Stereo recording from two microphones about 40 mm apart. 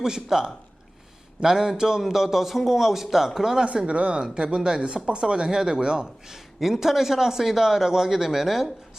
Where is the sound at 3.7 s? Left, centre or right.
Right.